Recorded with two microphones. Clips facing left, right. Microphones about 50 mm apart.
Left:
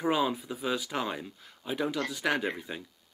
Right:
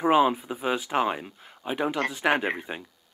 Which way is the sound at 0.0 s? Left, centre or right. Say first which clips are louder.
Right 7 dB; right.